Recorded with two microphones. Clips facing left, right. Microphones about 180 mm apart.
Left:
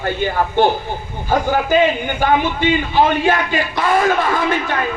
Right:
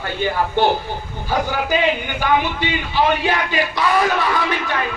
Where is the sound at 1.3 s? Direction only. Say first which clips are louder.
Left 4 dB; 45° left (ahead or behind).